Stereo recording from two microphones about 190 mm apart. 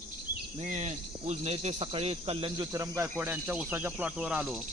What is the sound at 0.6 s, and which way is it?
Speech, 40° right (ahead or behind).